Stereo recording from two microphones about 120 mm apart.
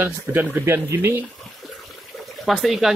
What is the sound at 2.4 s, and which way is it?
Speech, centre (ahead or behind).